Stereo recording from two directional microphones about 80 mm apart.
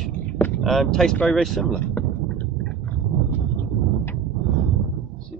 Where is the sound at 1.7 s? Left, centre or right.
Left.